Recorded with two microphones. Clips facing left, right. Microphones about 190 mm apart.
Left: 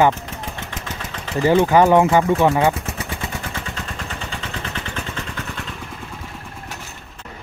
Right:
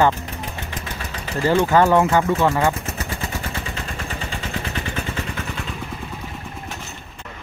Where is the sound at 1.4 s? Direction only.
15° left (ahead or behind).